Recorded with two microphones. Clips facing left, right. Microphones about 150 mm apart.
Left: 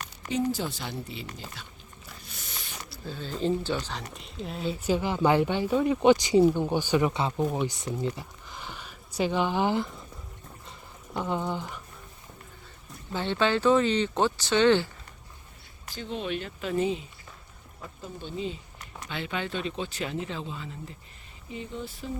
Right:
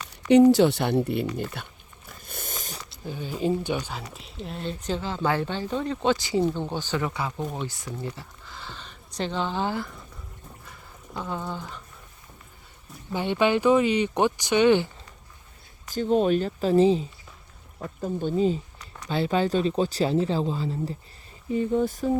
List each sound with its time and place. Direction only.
0.3 s speech: 70° right (ahead or behind); by 1.6 s 55° right (ahead or behind)
2.2 s biting: 50° right (ahead or behind)
2.9 s speech: 15° right (ahead or behind); by 9.9 s 20° left (ahead or behind)
10.7 s a sound: 20° left (ahead or behind)
13.1 s speech: 15° right (ahead or behind)
16.0 s speech: 45° right (ahead or behind)
18.0 s speech: 45° right (ahead or behind)
21.5 s speech: 50° right (ahead or behind)